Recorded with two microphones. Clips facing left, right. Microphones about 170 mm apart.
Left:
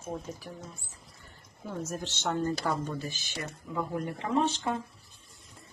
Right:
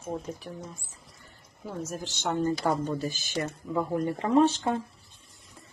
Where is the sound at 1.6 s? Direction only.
10° right (ahead or behind).